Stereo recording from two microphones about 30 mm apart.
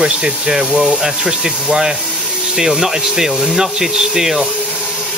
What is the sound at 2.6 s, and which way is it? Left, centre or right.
Speech, centre.